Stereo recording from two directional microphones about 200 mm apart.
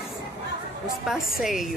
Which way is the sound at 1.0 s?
Centre (ahead or behind).